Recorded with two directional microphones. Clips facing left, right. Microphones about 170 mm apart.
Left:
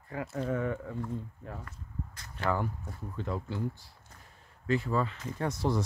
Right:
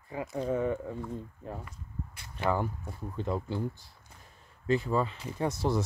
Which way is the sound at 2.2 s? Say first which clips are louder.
Right 2 dB; 20° right (ahead or behind).